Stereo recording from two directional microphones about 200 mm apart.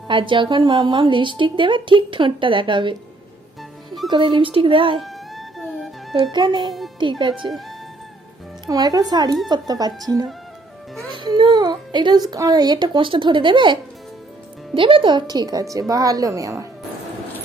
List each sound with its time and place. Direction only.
0.1 s a woman's voice: 25° right (ahead or behind)
4.1 s a woman's voice: 25° right (ahead or behind)
5.0 s music: centre (ahead or behind)
6.3 s a woman's voice: 25° right (ahead or behind)
8.6 s a woman's voice: 20° right (ahead or behind)
11.1 s a woman's voice: 20° right (ahead or behind)
14.8 s a woman's voice: 25° right (ahead or behind)